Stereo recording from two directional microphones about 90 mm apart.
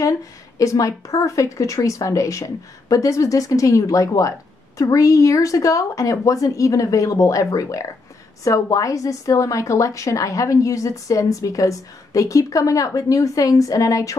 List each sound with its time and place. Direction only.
0.0 s a woman's voice: 40° left (ahead or behind)